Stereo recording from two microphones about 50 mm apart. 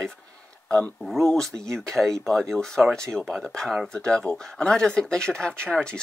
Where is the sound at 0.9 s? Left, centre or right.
Centre.